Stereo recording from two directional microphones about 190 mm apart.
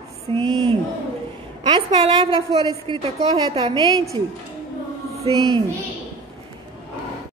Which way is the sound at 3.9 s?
20° right (ahead or behind).